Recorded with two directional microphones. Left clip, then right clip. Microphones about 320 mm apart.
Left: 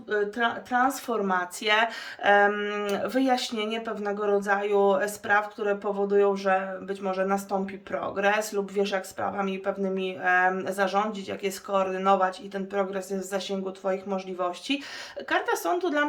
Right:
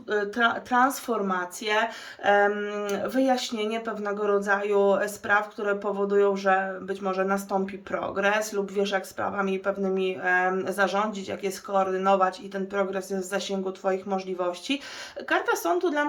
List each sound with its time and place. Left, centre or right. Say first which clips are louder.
0.1 s speech: right 2 dB; centre